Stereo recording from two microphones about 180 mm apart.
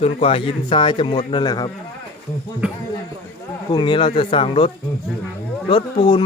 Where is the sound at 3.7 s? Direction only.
25° left (ahead or behind).